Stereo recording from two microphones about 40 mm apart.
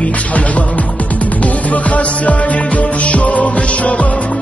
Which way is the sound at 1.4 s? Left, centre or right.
Left.